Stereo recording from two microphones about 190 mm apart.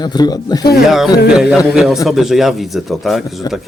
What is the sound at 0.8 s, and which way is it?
Speech, centre (ahead or behind).